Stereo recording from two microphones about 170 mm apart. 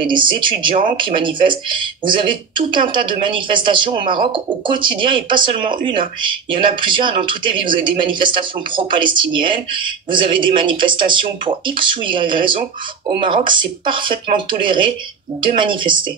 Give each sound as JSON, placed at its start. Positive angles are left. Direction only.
{"t": 0.0, "sound": "speech", "side_deg": -30}